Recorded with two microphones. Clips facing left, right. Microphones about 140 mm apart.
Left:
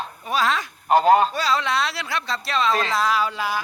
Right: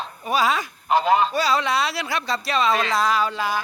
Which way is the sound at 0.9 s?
45° left (ahead or behind).